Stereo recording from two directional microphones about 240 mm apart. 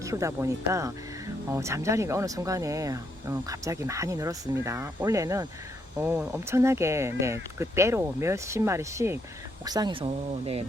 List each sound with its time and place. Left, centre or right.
0.0 s speech: centre